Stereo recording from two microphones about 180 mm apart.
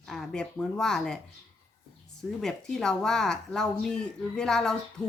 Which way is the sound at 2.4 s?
5° left (ahead or behind).